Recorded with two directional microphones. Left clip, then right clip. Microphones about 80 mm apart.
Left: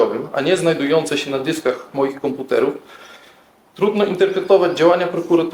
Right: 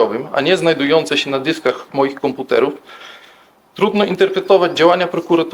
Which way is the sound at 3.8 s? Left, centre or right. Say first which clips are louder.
Right 2 dB; right.